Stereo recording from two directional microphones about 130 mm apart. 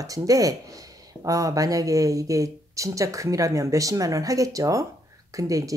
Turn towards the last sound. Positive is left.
turn(degrees=-25)  # may be behind; listen again after turning